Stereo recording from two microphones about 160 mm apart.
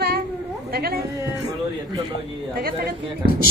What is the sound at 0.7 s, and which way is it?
Speech, 70° right (ahead or behind).